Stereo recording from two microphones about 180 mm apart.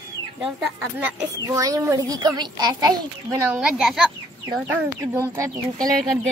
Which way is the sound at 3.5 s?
5° right (ahead or behind).